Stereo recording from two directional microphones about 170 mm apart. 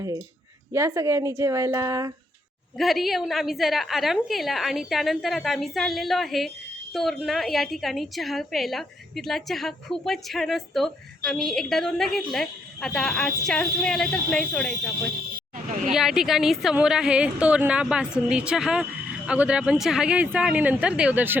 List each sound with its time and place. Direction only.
0.7 s speech: 15° right (ahead or behind)
2.7 s a woman's voice: centre (ahead or behind)
15.9 s a woman's voice: centre (ahead or behind)